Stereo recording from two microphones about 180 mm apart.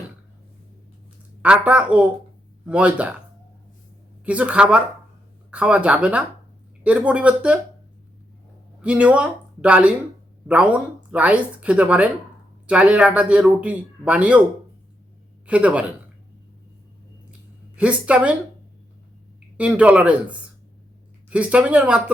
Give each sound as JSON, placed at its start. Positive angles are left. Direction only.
{"t": 1.4, "sound": "a man's voice", "side_deg": -5}
{"t": 4.3, "sound": "a man's voice", "side_deg": -5}
{"t": 8.8, "sound": "a man's voice", "side_deg": -5}
{"t": 15.4, "sound": "a man's voice", "side_deg": -5}
{"t": 17.7, "sound": "a man's voice", "side_deg": -5}
{"t": 19.5, "sound": "a man's voice", "side_deg": -5}